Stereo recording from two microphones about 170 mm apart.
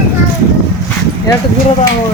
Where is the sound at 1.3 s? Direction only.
20° left (ahead or behind).